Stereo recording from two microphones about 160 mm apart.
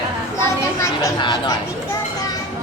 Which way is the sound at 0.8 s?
25° left (ahead or behind).